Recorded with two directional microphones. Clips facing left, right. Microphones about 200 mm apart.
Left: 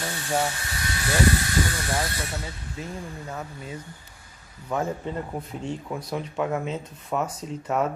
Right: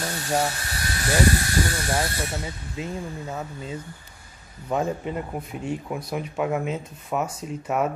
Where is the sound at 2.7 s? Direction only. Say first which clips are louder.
Right 4 dB; 20° right (ahead or behind).